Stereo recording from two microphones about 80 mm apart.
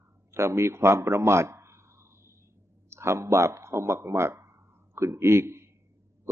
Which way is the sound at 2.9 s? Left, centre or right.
Right.